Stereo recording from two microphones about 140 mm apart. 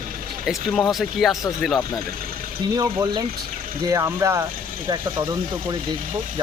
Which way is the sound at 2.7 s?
25° right (ahead or behind).